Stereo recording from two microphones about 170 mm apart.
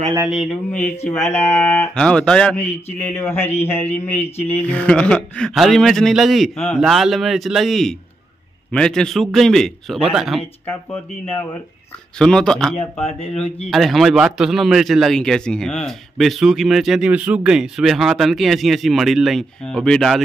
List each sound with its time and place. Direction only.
0.3 s speech: 5° left (ahead or behind)
2.0 s speech: 5° left (ahead or behind)
12.2 s speech: 5° left (ahead or behind)